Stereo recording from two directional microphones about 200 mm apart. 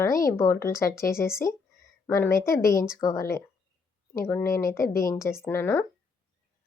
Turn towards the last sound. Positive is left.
turn(degrees=10)  # may be behind; listen again after turning